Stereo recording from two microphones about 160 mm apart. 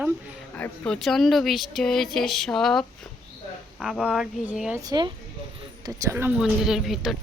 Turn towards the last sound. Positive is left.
turn(degrees=0)  # may be behind; listen again after turning